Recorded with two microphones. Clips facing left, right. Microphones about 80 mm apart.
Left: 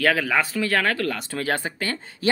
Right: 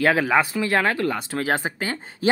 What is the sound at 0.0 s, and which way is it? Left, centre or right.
Speech, right.